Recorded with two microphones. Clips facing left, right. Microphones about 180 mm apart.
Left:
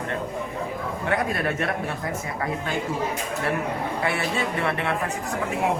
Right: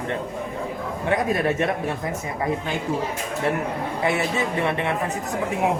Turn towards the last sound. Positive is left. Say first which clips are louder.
# right 2 dB
turn(degrees=-20)  # may be behind; listen again after turning